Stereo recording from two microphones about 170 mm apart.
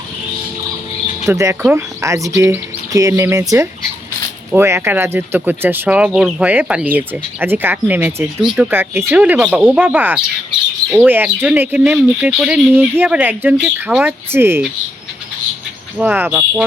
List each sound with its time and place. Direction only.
1.3 s speech: 20° right (ahead or behind)
16.0 s speech: 10° right (ahead or behind)